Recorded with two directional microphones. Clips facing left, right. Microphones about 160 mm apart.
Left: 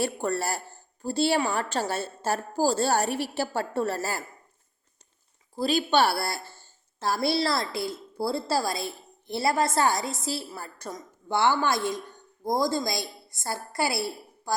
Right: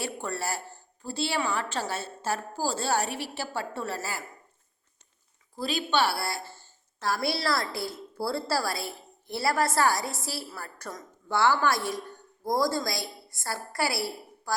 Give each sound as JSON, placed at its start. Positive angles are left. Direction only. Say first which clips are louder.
{"t": 0.0, "sound": "a woman's voice", "louder": "left 5 dB", "side_deg": 45}
{"t": 5.5, "sound": "speech", "louder": "left 4 dB", "side_deg": 35}
{"t": 7.0, "sound": "a woman's voice", "louder": "left 3 dB", "side_deg": 25}